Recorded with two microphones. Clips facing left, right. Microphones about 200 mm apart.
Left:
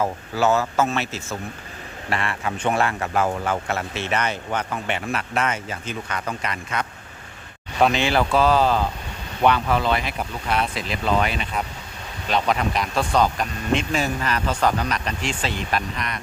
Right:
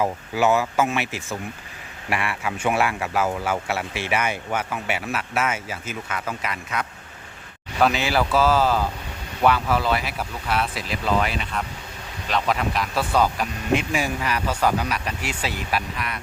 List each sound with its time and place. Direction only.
0.0 s speech: 15° right (ahead or behind)